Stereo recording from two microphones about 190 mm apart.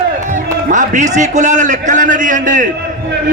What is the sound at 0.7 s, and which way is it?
A man's voice, 40° right (ahead or behind).